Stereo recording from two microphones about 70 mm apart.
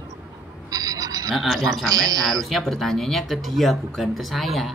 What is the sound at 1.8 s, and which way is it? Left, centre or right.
Speech, right.